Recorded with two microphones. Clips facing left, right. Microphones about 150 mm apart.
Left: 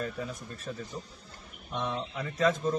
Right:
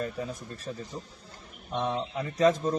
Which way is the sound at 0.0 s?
35° right (ahead or behind).